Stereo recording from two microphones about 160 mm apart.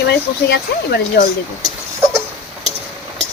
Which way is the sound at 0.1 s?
90° left.